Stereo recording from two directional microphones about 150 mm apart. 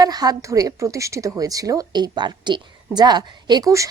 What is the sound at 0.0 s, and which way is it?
A woman's voice, 25° right (ahead or behind).